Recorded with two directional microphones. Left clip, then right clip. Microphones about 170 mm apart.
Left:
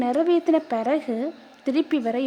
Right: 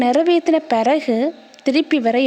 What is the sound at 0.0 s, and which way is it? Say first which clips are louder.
A woman's voice: right 6 dB; 25° right (ahead or behind).